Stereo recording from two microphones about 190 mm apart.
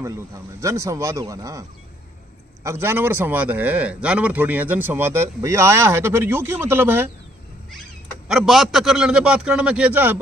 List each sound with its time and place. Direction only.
0.0 s a man's voice: 15° right (ahead or behind)
8.3 s a man's voice: centre (ahead or behind)